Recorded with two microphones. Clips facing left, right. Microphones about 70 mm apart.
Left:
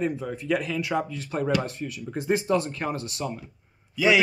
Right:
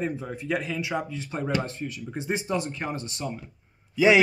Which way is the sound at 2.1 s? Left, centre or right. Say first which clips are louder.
Left 5 dB; centre.